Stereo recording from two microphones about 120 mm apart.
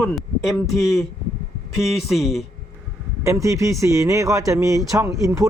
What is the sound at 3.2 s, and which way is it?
Speech, 25° right (ahead or behind).